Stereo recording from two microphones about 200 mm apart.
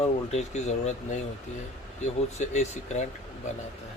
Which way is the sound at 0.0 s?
35° left (ahead or behind).